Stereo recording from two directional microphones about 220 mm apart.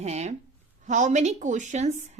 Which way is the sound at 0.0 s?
30° right (ahead or behind).